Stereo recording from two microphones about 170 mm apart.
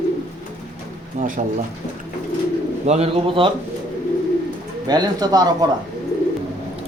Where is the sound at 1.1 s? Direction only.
50° right (ahead or behind).